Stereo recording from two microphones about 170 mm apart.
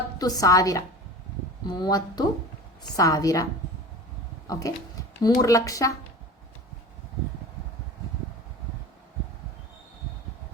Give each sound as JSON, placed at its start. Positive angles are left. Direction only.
{"t": 0.2, "sound": "a woman's voice", "side_deg": 20}
{"t": 4.4, "sound": "speech", "side_deg": 20}